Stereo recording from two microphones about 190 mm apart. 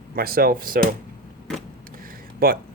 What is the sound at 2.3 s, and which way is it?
Speech, 50° right (ahead or behind).